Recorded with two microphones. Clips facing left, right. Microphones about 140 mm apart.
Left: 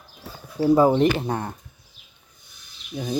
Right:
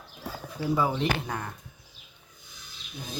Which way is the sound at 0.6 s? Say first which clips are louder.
Left 10 dB; 45° left (ahead or behind).